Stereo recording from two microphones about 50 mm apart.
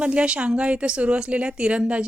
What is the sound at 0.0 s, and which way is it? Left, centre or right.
Speech, right.